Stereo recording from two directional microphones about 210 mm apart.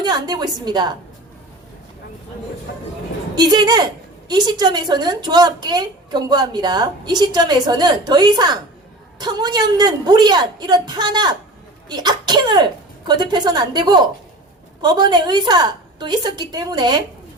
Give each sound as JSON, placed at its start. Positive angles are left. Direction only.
{"t": 0.0, "sound": "speech", "side_deg": -20}
{"t": 3.3, "sound": "speech", "side_deg": -20}